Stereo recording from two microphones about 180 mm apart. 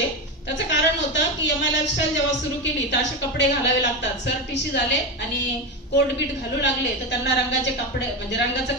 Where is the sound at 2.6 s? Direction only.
75° left (ahead or behind).